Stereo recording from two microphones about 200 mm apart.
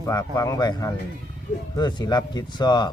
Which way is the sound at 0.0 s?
15° left (ahead or behind).